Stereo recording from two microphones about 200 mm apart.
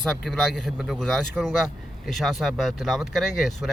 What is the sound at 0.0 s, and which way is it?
Speech, centre (ahead or behind).